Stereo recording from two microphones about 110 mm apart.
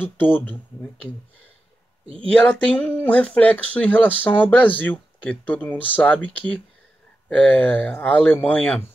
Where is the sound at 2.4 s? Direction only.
10° left (ahead or behind).